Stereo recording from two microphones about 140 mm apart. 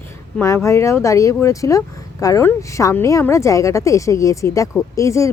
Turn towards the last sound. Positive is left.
turn(degrees=20)  # may be behind; listen again after turning